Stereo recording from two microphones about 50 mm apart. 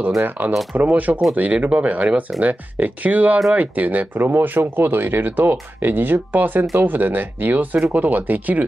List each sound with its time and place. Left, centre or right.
0.4 s speech: right